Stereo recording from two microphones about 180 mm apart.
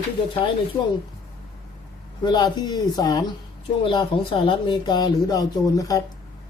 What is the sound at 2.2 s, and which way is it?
Speech, 25° left (ahead or behind).